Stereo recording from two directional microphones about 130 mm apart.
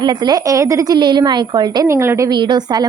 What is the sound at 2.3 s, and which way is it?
Speech, 35° right (ahead or behind).